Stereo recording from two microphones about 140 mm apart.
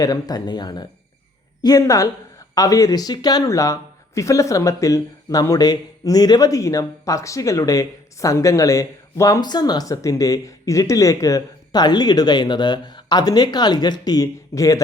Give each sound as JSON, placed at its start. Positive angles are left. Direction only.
{"t": 0.0, "sound": "speech", "side_deg": 25}